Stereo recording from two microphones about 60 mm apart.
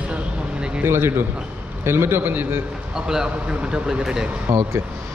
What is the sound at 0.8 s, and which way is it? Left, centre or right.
A man's voice, right.